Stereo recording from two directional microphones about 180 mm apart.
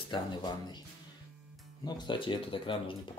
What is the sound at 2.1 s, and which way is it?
Speech, 30° left (ahead or behind).